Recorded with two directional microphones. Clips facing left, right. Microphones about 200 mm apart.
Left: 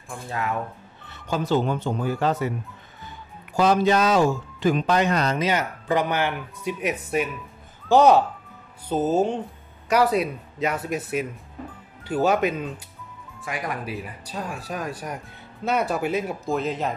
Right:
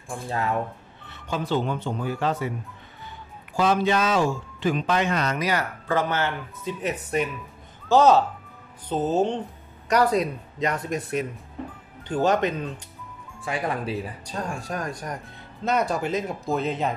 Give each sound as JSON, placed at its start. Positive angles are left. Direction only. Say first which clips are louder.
{"t": 1.3, "sound": "speech", "louder": "left 3 dB", "side_deg": 40}
{"t": 3.5, "sound": "speech", "louder": "left 3 dB", "side_deg": 40}
{"t": 13.5, "sound": "speech", "louder": "right 3 dB", "side_deg": -30}
{"t": 13.9, "sound": "speech", "louder": "right 2 dB", "side_deg": 5}